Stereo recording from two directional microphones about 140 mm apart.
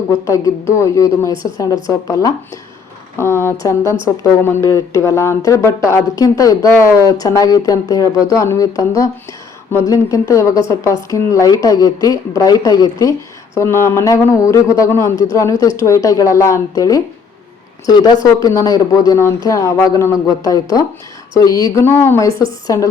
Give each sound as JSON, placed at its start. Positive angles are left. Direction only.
{"t": 0.7, "sound": "a woman's voice", "side_deg": 20}